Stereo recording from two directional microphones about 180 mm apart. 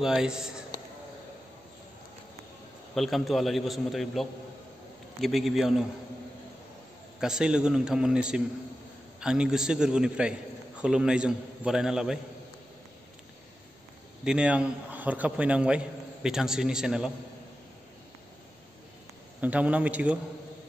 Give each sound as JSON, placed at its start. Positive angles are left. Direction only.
{"t": 0.0, "sound": "a man's voice", "side_deg": -5}
{"t": 2.9, "sound": "a man's voice", "side_deg": 0}
{"t": 7.2, "sound": "a man's voice", "side_deg": -5}
{"t": 14.2, "sound": "a man's voice", "side_deg": -5}
{"t": 19.4, "sound": "a man's voice", "side_deg": -10}